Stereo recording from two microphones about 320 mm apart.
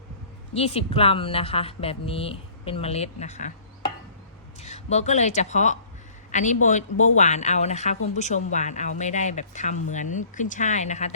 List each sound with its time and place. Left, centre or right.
0.5 s speech: centre